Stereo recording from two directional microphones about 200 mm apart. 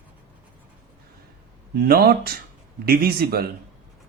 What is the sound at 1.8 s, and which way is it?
A man's voice, 50° right (ahead or behind).